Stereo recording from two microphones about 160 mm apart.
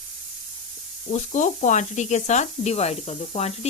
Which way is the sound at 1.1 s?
50° left (ahead or behind).